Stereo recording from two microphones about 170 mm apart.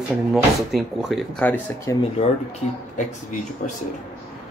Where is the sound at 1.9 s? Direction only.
15° left (ahead or behind).